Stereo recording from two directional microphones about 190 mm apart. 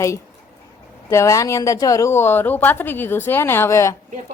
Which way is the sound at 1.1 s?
15° left (ahead or behind).